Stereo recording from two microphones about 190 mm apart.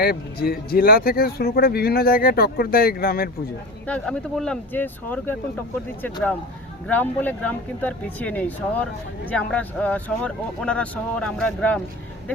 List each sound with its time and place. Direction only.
0.0 s speech: 55° left (ahead or behind)
3.8 s speech: 5° left (ahead or behind)
6.8 s speech: 10° left (ahead or behind)